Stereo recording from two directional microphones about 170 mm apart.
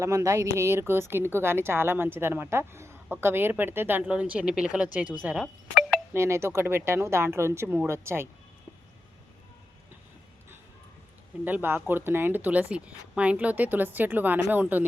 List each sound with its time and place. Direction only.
0.0 s a woman's voice: 15° right (ahead or behind)
6.1 s a woman's voice: 15° right (ahead or behind)
11.4 s a woman's voice: 10° right (ahead or behind)